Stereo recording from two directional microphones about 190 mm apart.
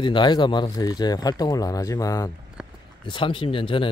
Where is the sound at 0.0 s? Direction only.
25° left (ahead or behind).